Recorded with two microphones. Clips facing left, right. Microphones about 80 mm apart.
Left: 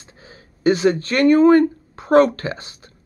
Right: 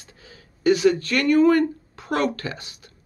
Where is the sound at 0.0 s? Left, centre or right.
Left.